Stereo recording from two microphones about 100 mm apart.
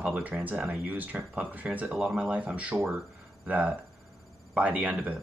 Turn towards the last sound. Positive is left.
turn(degrees=-15)  # may be behind; listen again after turning